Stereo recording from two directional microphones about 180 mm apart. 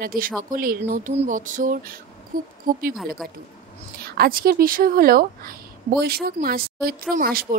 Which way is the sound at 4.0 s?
60° right (ahead or behind).